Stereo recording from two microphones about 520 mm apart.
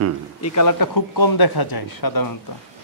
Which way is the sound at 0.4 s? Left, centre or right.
Left.